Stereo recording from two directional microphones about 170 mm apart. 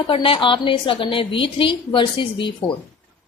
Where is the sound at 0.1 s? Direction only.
30° left (ahead or behind).